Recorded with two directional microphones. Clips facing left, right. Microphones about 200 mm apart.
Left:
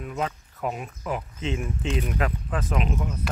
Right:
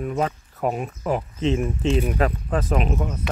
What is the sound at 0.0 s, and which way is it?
Speech, 45° right (ahead or behind).